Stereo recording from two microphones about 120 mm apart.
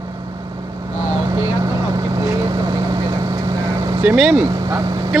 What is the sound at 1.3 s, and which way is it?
Vehicle, 30° right (ahead or behind).